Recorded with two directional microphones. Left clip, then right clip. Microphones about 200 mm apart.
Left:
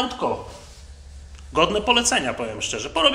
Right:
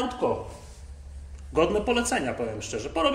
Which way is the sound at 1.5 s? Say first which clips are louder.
Left 5 dB; centre (ahead or behind).